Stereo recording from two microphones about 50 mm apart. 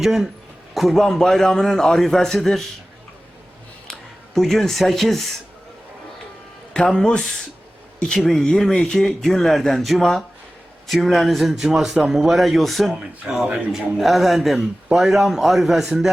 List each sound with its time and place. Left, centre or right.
0.0 s a man's voice: centre
1.0 s speech: centre
4.4 s a man's voice: centre
6.7 s a man's voice: centre
11.6 s speech: centre
13.0 s a man's voice: centre